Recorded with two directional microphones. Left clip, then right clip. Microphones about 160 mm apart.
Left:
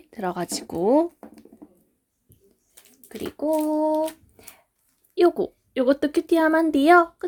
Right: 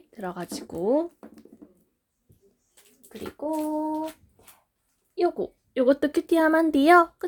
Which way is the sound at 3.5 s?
60° left (ahead or behind).